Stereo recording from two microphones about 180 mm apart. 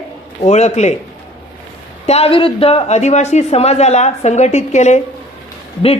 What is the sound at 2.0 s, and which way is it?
Speech, 35° left (ahead or behind).